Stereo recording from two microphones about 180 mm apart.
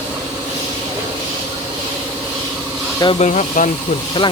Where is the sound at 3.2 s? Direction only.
45° left (ahead or behind).